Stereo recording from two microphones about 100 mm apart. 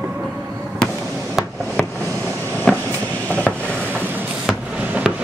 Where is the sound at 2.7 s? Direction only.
5° left (ahead or behind).